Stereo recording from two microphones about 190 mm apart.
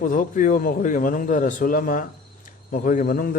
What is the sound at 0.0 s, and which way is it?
A man's voice, 45° left (ahead or behind).